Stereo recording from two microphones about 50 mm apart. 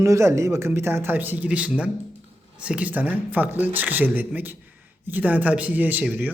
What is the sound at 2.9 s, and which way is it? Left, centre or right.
Speech, right.